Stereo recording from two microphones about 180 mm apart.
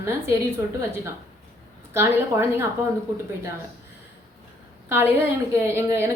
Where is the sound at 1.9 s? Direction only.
15° right (ahead or behind).